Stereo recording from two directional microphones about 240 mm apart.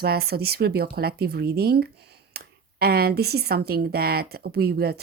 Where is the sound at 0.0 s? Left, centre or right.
Right.